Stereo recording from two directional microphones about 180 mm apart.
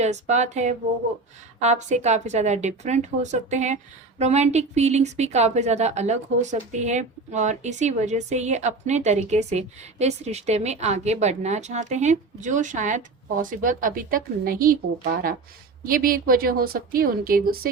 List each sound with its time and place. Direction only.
0.0 s a woman's voice: 40° right (ahead or behind); by 17.7 s 55° right (ahead or behind)